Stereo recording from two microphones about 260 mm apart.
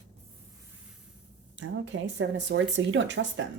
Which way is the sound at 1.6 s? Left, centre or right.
Right.